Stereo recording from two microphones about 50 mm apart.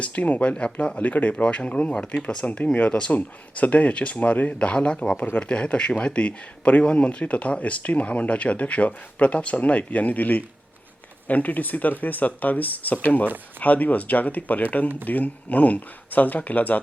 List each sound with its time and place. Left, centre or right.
0.0 s speech: left
0.5 s speech: centre
5.1 s speech: left
5.4 s speech: left